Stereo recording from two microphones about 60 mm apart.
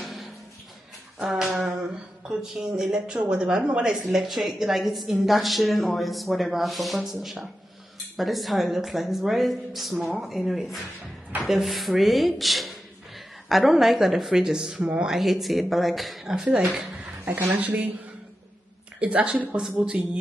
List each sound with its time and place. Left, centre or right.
0.0 s a sound: centre
1.8 s speech: centre
15.0 s speech: centre
17.4 s speech: right
18.9 s speech: right